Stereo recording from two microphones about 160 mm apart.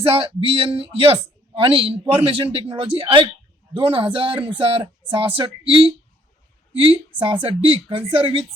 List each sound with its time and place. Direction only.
0.0 s speech: 35° right (ahead or behind)